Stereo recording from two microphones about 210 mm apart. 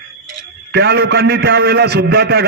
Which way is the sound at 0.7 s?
50° right (ahead or behind).